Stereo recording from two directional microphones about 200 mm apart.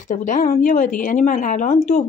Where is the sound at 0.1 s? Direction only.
40° left (ahead or behind).